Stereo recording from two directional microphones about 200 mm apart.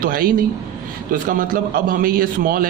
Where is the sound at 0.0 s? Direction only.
45° right (ahead or behind).